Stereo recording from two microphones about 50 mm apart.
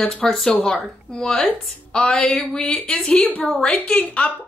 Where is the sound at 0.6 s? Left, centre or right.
Centre.